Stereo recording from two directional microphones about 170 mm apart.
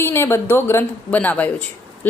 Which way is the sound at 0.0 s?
15° left (ahead or behind).